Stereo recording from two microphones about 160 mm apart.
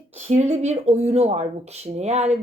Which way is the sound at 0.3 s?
45° right (ahead or behind).